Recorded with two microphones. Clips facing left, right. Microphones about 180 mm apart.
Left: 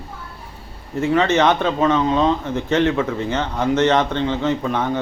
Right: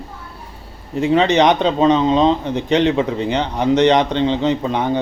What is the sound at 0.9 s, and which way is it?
Speech, 20° right (ahead or behind).